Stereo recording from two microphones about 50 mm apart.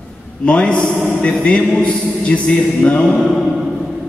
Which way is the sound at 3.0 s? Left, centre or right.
Centre.